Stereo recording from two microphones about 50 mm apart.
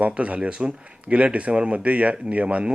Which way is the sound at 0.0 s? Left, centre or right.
Right.